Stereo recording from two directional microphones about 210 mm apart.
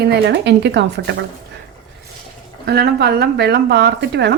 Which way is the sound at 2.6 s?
50° right (ahead or behind).